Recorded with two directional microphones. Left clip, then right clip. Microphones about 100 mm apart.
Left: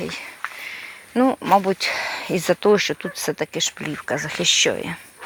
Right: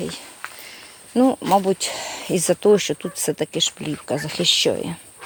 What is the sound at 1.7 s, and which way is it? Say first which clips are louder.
Speech: left 2 dB; 35° right (ahead or behind).